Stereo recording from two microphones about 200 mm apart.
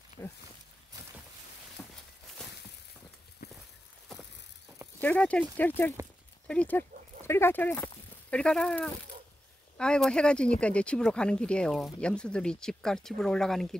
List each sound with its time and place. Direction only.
0.2 s speech: 15° left (ahead or behind)
1.8 s walk: 5° left (ahead or behind)
5.0 s speech: 5° left (ahead or behind)